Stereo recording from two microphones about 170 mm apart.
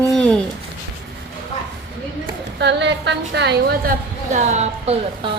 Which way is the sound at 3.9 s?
45° right (ahead or behind).